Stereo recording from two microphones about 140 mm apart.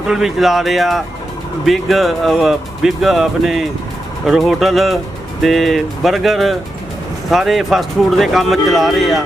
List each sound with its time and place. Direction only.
0.1 s speech: 5° right (ahead or behind)